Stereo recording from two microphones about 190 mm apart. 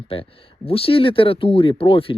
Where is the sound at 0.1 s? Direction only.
30° left (ahead or behind).